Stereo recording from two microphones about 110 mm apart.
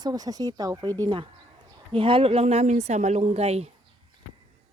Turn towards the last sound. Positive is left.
turn(degrees=-70)  # may be behind; listen again after turning